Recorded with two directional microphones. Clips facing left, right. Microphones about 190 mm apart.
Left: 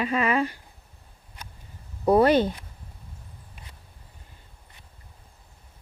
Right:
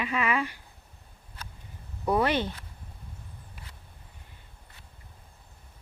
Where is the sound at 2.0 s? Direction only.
35° left (ahead or behind).